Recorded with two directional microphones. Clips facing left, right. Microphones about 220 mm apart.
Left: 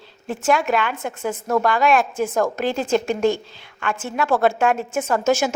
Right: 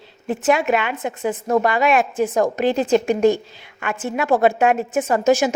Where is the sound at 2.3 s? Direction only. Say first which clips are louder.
Right 2 dB; 15° right (ahead or behind).